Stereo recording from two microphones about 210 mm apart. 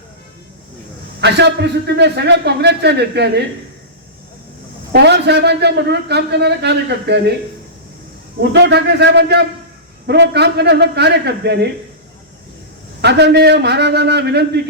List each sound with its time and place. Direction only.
1.2 s a man's voice: 55° right (ahead or behind)
4.9 s a man's voice: 50° right (ahead or behind)
8.4 s a man's voice: 55° right (ahead or behind)
13.0 s a man's voice: 55° right (ahead or behind)